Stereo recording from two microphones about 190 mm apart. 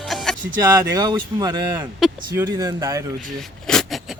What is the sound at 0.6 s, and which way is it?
Speech, 20° right (ahead or behind).